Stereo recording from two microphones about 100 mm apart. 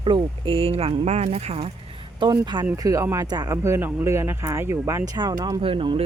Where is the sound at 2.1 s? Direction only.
50° right (ahead or behind).